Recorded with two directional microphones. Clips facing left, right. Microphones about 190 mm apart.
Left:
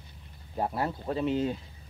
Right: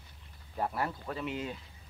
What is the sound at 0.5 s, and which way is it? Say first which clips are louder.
Speech: left 3 dB; 25° left (ahead or behind).